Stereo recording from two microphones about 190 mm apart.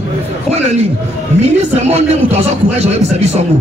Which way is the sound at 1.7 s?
35° right (ahead or behind).